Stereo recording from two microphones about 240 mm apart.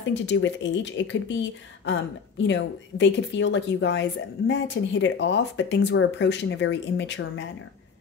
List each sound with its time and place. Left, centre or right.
0.1 s a woman's voice: left